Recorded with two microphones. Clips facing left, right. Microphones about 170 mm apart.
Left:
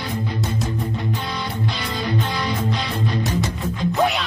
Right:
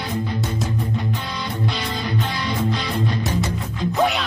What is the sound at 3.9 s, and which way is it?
Music, centre (ahead or behind).